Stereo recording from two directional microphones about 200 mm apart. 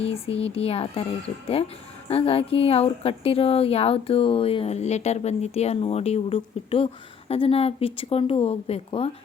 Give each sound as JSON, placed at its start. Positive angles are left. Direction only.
{"t": 0.0, "sound": "speech", "side_deg": 30}